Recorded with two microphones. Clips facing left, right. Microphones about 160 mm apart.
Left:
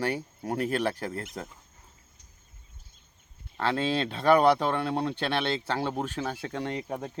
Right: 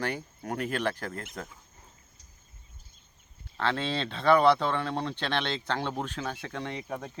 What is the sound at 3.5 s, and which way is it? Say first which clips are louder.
Speech: left 3 dB; 10° left (ahead or behind).